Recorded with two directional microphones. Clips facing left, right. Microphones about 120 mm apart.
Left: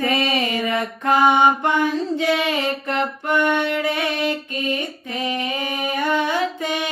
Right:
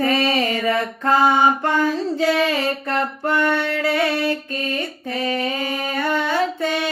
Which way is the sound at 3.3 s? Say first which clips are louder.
Left 1 dB; 15° left (ahead or behind).